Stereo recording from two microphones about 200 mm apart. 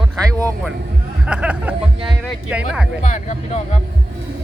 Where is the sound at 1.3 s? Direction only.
5° right (ahead or behind).